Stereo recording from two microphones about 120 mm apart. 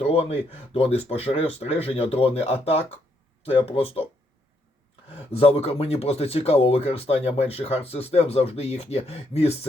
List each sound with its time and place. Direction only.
0.0 s speech: 55° left (ahead or behind)
5.3 s speech: 55° left (ahead or behind)